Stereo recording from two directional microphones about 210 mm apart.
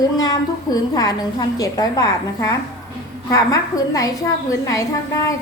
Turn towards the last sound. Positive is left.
turn(degrees=15)  # may be behind; listen again after turning